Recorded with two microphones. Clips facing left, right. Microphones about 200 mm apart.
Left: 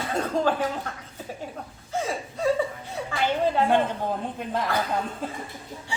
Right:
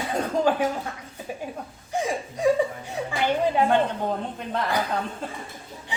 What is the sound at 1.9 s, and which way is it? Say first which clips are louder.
Speech: right 2 dB; 15° right (ahead or behind).